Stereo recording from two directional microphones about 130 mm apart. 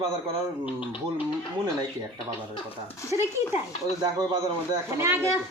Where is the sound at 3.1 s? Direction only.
20° right (ahead or behind).